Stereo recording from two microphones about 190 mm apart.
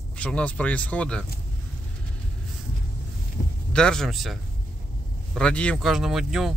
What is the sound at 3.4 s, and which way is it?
Heart sounds, 35° left (ahead or behind).